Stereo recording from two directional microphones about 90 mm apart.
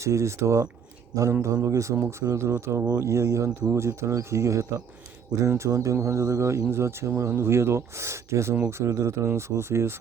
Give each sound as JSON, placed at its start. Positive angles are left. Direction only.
{"t": 0.0, "sound": "speech", "side_deg": -35}